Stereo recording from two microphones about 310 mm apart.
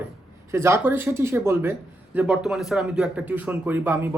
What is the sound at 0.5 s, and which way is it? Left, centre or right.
Speech, centre.